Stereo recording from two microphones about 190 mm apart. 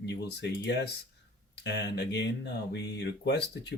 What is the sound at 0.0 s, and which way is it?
Speech, 65° left (ahead or behind).